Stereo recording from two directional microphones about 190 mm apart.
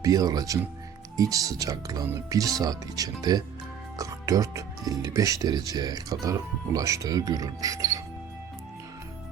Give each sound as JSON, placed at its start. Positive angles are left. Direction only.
{"t": 0.0, "sound": "speech", "side_deg": -20}